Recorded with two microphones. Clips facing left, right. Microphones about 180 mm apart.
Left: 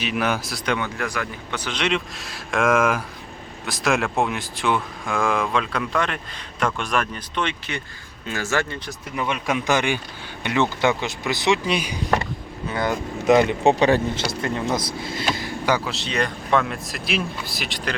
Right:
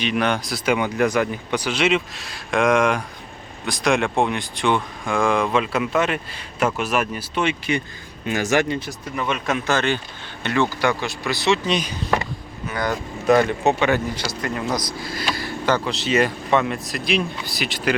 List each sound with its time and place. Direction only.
0.0 s speech: 5° left (ahead or behind)
0.9 s speech: 20° right (ahead or behind)
9.1 s speech: 10° left (ahead or behind)
12.6 s speech: 25° left (ahead or behind)
13.7 s speech: 30° left (ahead or behind); by 17.9 s centre (ahead or behind)